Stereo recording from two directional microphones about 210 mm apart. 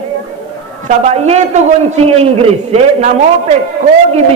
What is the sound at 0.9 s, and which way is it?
A man's voice, 30° right (ahead or behind).